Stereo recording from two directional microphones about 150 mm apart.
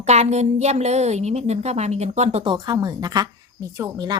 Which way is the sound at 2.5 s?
30° right (ahead or behind).